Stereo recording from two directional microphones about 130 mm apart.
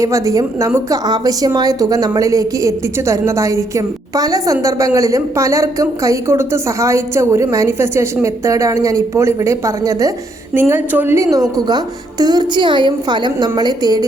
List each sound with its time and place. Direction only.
0.0 s a woman's voice: 25° right (ahead or behind)